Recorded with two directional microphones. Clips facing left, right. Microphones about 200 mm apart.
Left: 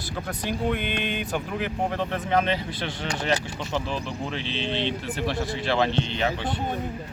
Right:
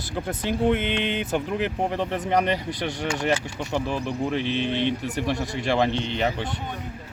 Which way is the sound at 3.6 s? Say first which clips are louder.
Right 2 dB; 15° right (ahead or behind).